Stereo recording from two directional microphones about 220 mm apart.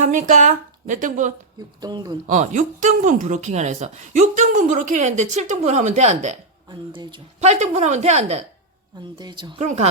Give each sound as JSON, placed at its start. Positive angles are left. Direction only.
{"t": 0.0, "sound": "speech", "side_deg": -35}
{"t": 1.8, "sound": "speech", "side_deg": -20}
{"t": 2.2, "sound": "speech", "side_deg": -35}
{"t": 6.7, "sound": "speech", "side_deg": -20}